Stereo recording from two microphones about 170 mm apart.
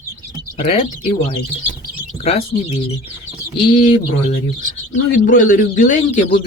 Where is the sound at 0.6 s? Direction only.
35° left (ahead or behind).